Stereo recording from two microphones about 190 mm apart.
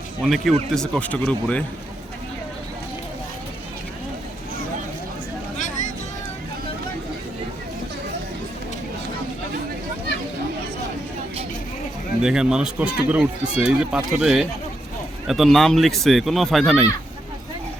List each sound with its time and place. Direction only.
0.3 s speech: centre (ahead or behind)
5.5 s a sound: 40° left (ahead or behind)
12.2 s speech: 5° right (ahead or behind)